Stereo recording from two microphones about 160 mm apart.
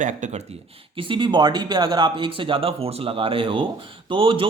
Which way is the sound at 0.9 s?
30° right (ahead or behind).